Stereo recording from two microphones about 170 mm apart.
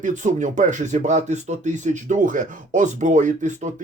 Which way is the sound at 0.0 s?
45° right (ahead or behind).